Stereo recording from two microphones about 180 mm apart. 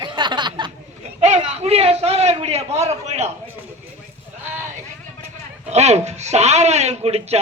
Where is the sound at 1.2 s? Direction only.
40° right (ahead or behind).